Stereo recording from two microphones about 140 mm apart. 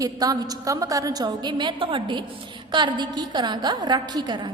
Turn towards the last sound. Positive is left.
turn(degrees=-30)  # may be behind; listen again after turning